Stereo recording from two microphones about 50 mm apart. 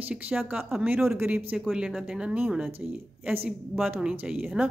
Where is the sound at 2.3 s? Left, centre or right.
Right.